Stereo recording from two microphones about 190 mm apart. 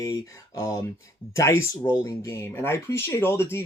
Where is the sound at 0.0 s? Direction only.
15° left (ahead or behind).